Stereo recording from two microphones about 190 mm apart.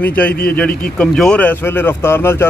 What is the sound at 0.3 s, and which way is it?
Speech, 55° left (ahead or behind).